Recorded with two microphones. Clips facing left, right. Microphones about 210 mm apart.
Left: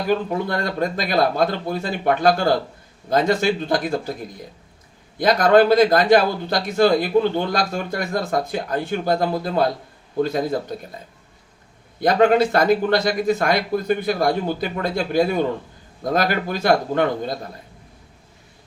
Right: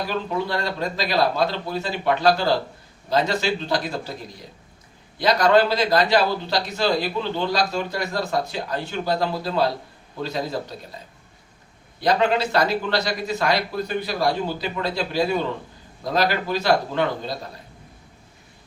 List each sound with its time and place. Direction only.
0.1 s speech: 50° left (ahead or behind)
5.1 s speech: 50° left (ahead or behind)
11.9 s speech: 50° left (ahead or behind)